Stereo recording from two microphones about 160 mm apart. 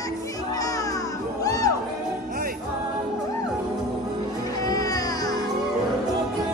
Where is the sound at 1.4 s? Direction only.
25° left (ahead or behind).